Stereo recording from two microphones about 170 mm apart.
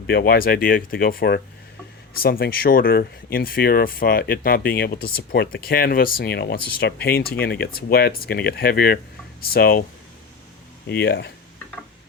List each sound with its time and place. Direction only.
0.1 s speech: 70° left (ahead or behind)
10.8 s speech: 75° left (ahead or behind)